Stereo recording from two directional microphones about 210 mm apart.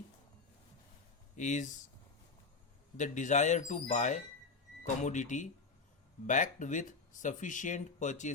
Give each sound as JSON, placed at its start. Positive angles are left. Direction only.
{"t": 1.4, "sound": "speech", "side_deg": 35}
{"t": 3.0, "sound": "speech", "side_deg": 35}